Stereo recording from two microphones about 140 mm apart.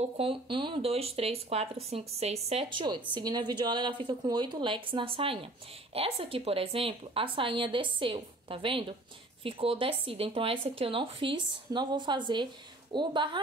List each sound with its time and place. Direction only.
0.2 s speech: 40° right (ahead or behind)
2.9 s speech: 30° right (ahead or behind)